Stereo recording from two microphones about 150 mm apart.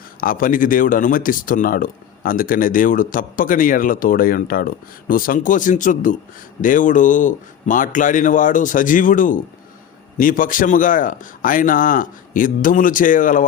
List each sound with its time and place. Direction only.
0.2 s a man's voice: 70° left (ahead or behind)